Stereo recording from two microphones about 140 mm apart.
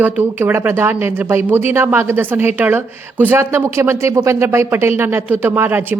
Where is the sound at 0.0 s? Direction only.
15° right (ahead or behind).